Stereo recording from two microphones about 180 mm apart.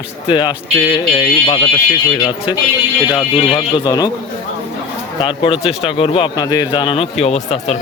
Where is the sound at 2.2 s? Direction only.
25° left (ahead or behind).